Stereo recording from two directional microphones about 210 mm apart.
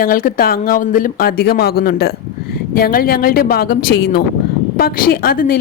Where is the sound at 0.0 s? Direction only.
45° left (ahead or behind).